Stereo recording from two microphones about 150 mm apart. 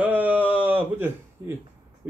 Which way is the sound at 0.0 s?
10° right (ahead or behind).